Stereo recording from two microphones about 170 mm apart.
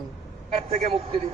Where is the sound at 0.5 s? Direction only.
40° right (ahead or behind).